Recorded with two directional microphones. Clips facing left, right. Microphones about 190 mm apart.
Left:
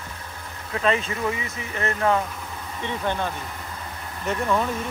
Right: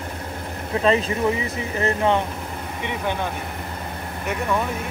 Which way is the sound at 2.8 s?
15° right (ahead or behind).